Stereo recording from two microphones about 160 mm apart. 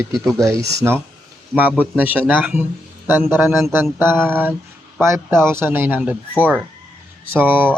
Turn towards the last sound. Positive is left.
turn(degrees=-10)  # may be behind; listen again after turning